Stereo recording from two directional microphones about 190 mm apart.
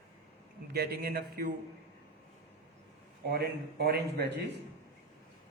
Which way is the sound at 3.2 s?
55° right (ahead or behind).